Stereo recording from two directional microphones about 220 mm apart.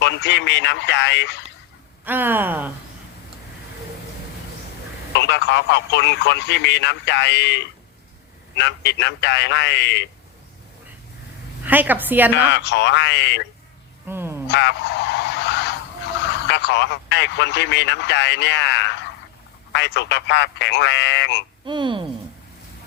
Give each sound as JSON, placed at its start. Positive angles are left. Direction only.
{"t": 0.0, "sound": "speech", "side_deg": 50}
{"t": 2.0, "sound": "a woman's voice", "side_deg": -10}
{"t": 5.1, "sound": "speech", "side_deg": 50}
{"t": 11.6, "sound": "a woman's voice", "side_deg": -10}
{"t": 12.5, "sound": "speech", "side_deg": 50}
{"t": 14.1, "sound": "frog", "side_deg": -10}
{"t": 14.5, "sound": "speech", "side_deg": 50}
{"t": 21.6, "sound": "speech", "side_deg": -20}